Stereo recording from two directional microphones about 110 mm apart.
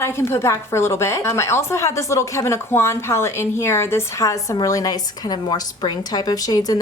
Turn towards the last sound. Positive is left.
turn(degrees=35)  # may be behind; listen again after turning